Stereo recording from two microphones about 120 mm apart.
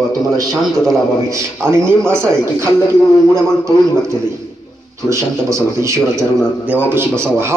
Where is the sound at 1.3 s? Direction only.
25° right (ahead or behind).